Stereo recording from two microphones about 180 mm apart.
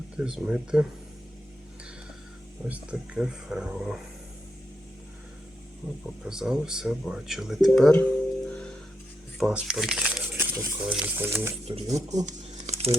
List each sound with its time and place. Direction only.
0.2 s speech: 5° right (ahead or behind)
2.6 s speech: 5° right (ahead or behind)
6.2 s speech: 5° right (ahead or behind)
8.4 s music: 5° left (ahead or behind)
9.4 s speech: 5° right (ahead or behind)
11.6 s speech: 35° right (ahead or behind)
11.9 s shuffling cards: 40° right (ahead or behind)